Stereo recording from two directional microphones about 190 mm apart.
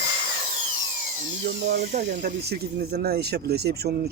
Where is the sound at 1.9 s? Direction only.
40° right (ahead or behind).